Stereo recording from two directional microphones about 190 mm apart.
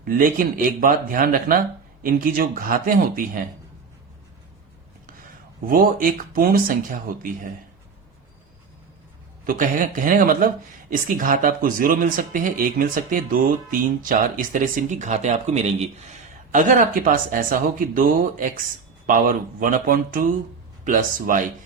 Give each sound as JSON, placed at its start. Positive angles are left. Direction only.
{"t": 0.0, "sound": "speech", "side_deg": -50}
{"t": 5.6, "sound": "speech", "side_deg": -50}
{"t": 9.5, "sound": "speech", "side_deg": -45}